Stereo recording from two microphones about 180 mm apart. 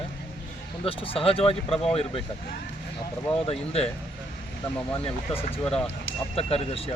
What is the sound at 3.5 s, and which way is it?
Speech, 35° left (ahead or behind).